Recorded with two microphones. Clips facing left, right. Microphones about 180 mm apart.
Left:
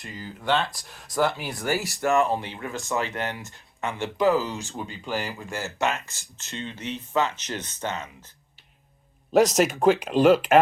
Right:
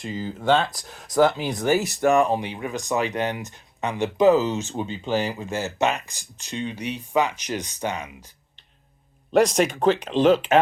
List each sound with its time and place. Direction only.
0.0 s speech: 25° right (ahead or behind)
1.4 s speech: 20° right (ahead or behind)
9.3 s speech: centre (ahead or behind)